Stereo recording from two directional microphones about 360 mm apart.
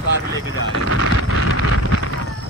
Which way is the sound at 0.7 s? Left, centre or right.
Left.